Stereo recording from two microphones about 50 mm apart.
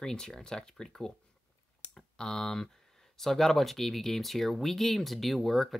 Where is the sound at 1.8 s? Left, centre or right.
Centre.